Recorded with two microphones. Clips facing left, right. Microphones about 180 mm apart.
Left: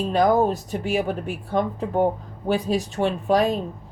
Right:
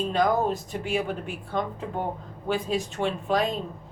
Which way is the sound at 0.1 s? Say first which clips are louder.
Left 6 dB; 40° left (ahead or behind).